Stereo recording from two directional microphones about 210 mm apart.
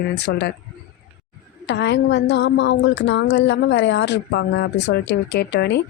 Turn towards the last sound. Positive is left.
turn(degrees=55)  # may be behind; listen again after turning